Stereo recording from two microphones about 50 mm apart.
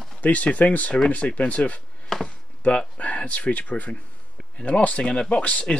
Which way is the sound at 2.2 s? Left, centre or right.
Left.